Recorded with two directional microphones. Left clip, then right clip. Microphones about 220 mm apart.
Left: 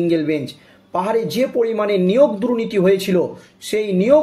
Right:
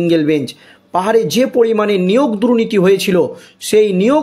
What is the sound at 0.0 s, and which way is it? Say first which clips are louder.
Speech: right 5 dB; 45° right (ahead or behind).